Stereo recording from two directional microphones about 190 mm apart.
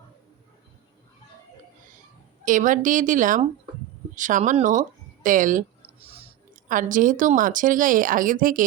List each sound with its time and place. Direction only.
2.4 s a woman's voice: 45° right (ahead or behind)
6.0 s chewing: 30° right (ahead or behind)
6.7 s a woman's voice: 45° right (ahead or behind)